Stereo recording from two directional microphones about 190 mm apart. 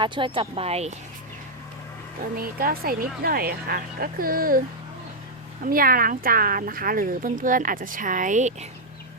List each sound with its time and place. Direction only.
0.0 s speech: 25° right (ahead or behind)
2.4 s speech: 50° right (ahead or behind)
5.6 s speech: 50° right (ahead or behind)